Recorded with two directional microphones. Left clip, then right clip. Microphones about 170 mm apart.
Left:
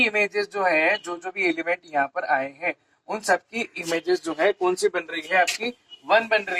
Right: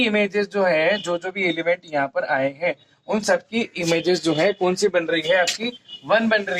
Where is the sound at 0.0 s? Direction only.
15° right (ahead or behind).